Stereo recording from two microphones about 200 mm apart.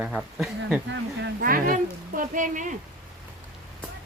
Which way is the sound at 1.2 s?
45° right (ahead or behind).